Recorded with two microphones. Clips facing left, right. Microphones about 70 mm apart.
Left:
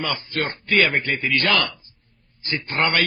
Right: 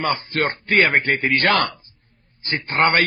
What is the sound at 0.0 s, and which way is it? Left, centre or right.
A man's voice, right.